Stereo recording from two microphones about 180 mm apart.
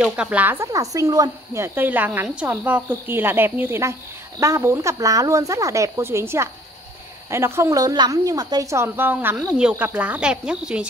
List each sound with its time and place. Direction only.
0.0 s speech: 5° right (ahead or behind)